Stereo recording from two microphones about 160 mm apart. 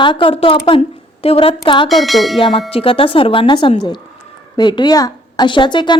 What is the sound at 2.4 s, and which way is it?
A woman's voice, 35° left (ahead or behind).